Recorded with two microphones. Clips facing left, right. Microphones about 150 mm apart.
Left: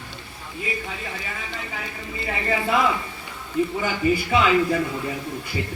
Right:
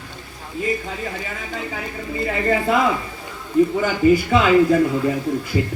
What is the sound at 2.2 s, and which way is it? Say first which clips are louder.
Speech: right 5 dB; 45° right (ahead or behind).